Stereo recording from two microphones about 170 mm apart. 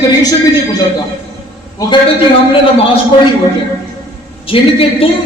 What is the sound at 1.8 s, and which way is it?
Speech, 20° left (ahead or behind).